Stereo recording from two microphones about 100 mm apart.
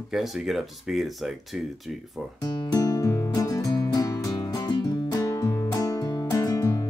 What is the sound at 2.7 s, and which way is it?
Music, 40° left (ahead or behind).